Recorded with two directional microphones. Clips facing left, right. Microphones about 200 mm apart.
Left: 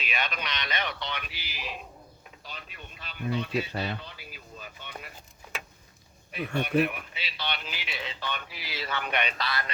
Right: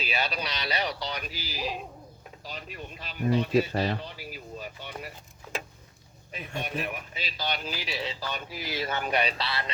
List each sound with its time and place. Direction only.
0.0 s speech: 35° right (ahead or behind)
6.3 s speech: 40° right (ahead or behind)